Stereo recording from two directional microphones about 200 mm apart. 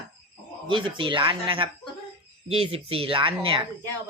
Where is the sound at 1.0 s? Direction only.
25° right (ahead or behind).